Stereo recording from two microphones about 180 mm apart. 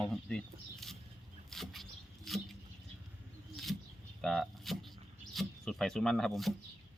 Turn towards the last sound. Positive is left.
turn(degrees=0)  # may be behind; listen again after turning